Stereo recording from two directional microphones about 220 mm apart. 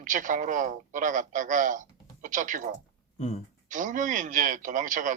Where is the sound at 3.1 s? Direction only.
30° left (ahead or behind).